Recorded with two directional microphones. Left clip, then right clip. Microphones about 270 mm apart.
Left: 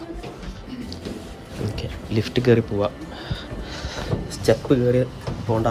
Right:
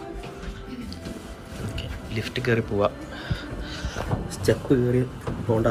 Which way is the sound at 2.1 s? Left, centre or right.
Centre.